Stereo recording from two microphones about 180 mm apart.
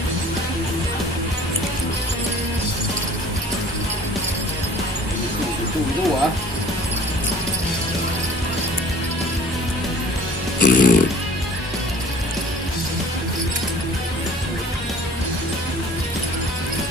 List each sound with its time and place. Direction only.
10.6 s music: 50° left (ahead or behind)